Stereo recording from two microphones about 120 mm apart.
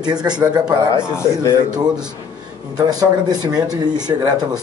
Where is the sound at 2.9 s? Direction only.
35° right (ahead or behind).